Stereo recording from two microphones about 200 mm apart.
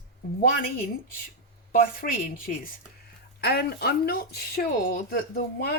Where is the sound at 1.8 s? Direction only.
45° left (ahead or behind).